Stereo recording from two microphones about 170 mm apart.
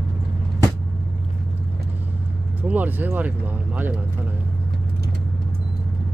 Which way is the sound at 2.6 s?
10° right (ahead or behind).